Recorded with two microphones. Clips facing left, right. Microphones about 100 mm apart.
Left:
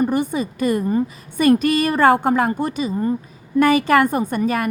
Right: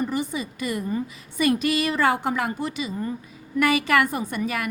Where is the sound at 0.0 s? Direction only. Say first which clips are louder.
Left 7 dB; 50° left (ahead or behind).